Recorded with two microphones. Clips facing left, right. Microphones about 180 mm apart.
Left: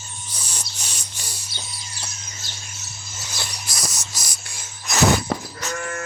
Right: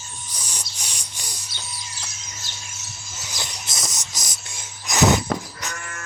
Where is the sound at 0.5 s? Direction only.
10° right (ahead or behind).